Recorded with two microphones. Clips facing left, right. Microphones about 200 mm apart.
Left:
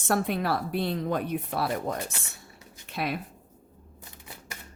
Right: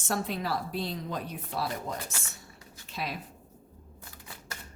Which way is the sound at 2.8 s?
60° left (ahead or behind).